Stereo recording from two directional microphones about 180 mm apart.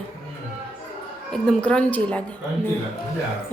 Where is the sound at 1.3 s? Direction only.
5° left (ahead or behind).